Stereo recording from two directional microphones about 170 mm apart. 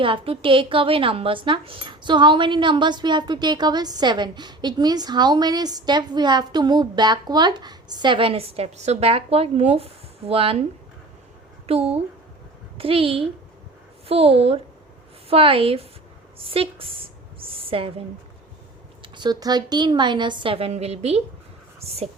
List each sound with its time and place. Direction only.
0.0 s a woman's voice: 30° right (ahead or behind)
19.0 s a woman's voice: 25° right (ahead or behind)